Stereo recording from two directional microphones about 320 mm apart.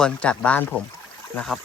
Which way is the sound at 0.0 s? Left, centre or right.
Centre.